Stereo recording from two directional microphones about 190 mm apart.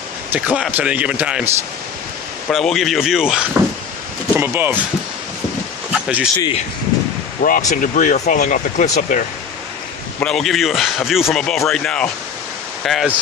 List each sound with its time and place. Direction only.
0.3 s a man's voice: 5° right (ahead or behind)
2.5 s a man's voice: centre (ahead or behind)
5.9 s speech: 5° right (ahead or behind)
7.4 s speech: 45° left (ahead or behind)
10.2 s a man's voice: centre (ahead or behind)